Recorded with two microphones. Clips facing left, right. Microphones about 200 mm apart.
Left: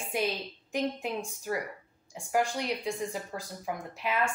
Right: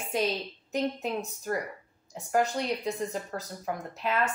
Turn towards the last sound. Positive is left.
turn(degrees=10)  # may be behind; listen again after turning